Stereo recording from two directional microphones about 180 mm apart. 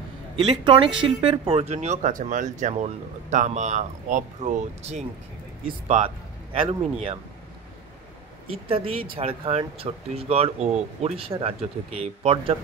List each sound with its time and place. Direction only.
0.5 s speech: 30° right (ahead or behind)
8.5 s speech: 30° right (ahead or behind)